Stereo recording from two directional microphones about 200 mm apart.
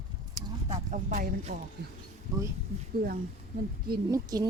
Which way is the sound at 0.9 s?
40° right (ahead or behind).